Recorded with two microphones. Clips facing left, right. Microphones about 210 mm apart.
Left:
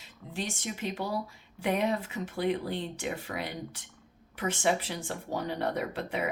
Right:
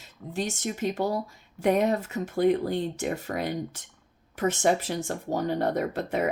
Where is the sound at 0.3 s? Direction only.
45° right (ahead or behind).